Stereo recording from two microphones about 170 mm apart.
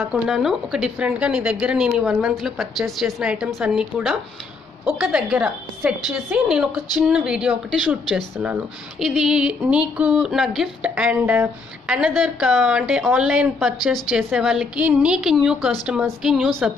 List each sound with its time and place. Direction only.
0.0 s a woman's voice: 5° right (ahead or behind)